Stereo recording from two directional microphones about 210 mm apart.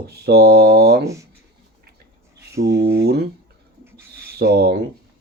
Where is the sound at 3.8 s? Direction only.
10° right (ahead or behind).